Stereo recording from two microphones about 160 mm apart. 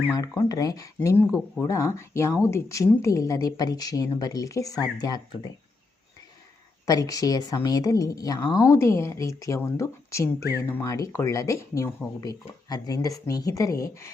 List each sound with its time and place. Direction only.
0.1 s a woman's voice: 20° left (ahead or behind)
6.8 s a woman's voice: 25° left (ahead or behind)